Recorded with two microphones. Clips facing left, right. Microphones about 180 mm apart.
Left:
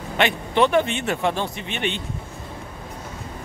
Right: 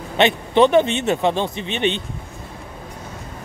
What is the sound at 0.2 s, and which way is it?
Speech, 20° right (ahead or behind).